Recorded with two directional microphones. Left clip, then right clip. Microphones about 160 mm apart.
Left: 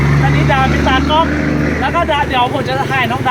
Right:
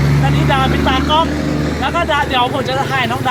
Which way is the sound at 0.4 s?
Centre (ahead or behind).